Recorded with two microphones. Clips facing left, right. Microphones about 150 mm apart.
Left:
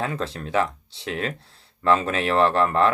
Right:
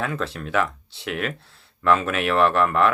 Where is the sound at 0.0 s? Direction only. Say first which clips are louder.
Even; 30° left (ahead or behind).